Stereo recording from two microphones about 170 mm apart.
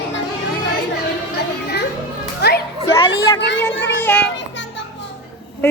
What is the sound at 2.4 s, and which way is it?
Music, 75° left (ahead or behind).